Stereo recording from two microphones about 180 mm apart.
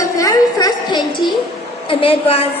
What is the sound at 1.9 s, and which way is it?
Speech, 30° left (ahead or behind).